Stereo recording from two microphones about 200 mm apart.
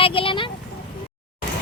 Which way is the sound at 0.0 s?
25° left (ahead or behind).